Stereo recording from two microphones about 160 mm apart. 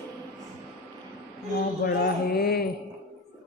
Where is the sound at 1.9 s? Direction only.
75° left (ahead or behind).